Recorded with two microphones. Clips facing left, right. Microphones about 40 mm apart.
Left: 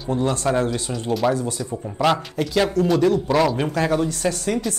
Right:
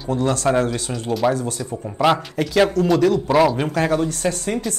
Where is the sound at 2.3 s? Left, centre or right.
Centre.